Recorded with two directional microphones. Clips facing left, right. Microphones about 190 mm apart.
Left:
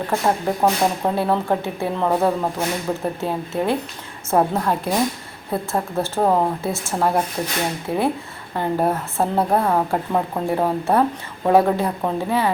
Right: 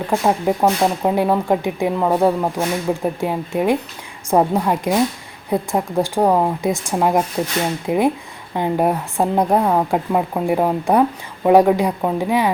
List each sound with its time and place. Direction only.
0.1 s a woman's voice: 10° right (ahead or behind)